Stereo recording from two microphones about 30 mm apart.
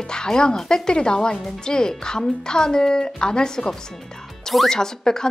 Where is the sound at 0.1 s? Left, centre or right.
Left.